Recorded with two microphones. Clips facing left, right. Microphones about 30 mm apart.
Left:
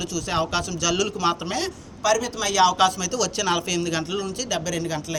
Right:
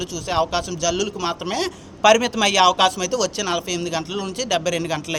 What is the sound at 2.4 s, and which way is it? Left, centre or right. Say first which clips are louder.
Speech: right 4 dB; right.